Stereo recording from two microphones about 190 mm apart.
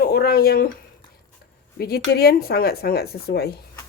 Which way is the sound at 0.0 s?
55° left (ahead or behind).